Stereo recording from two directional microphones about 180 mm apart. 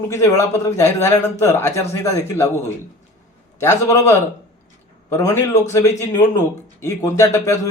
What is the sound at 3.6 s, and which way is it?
A man's voice, 15° left (ahead or behind).